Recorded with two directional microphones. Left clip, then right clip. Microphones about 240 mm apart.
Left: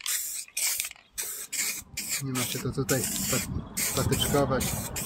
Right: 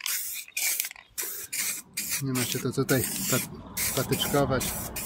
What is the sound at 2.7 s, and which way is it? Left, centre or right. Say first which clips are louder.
Speech: right 3 dB; right.